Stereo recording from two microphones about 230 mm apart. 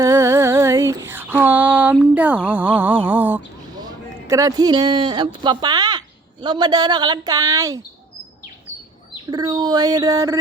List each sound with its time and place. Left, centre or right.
0.0 s female singing: centre
3.8 s speech: centre
9.3 s speech: centre